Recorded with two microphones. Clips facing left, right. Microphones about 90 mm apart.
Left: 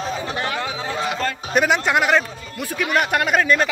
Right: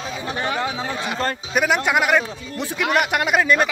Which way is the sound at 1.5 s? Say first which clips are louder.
Left 1 dB; 5° right (ahead or behind).